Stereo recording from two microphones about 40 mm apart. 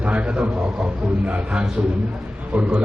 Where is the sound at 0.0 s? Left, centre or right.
Right.